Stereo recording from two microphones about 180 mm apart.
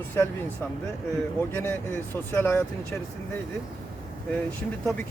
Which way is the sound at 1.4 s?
10° left (ahead or behind).